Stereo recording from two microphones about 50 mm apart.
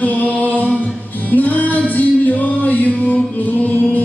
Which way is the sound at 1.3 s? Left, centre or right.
Left.